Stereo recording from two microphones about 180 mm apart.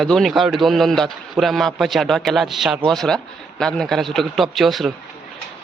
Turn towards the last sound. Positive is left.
turn(degrees=0)  # may be behind; listen again after turning